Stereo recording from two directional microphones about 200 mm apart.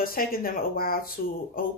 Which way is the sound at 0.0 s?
45° left (ahead or behind).